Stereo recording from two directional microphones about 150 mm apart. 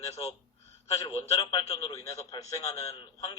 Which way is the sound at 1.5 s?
45° left (ahead or behind).